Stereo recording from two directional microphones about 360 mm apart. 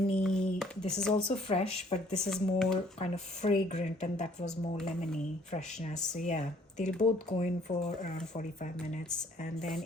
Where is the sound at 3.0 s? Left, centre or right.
Centre.